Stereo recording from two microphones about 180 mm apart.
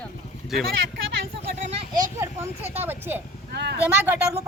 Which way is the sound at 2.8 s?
10° right (ahead or behind).